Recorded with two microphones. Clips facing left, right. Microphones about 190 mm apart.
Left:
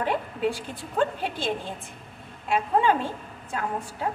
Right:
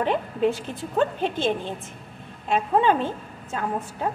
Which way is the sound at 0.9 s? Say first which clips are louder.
Right 3 dB; 20° right (ahead or behind).